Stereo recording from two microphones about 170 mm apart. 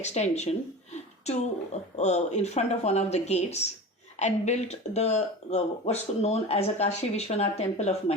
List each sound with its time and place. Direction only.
0.0 s speech: 40° left (ahead or behind)